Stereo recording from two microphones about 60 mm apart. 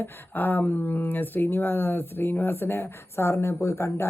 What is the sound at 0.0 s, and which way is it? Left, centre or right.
A woman's voice, left.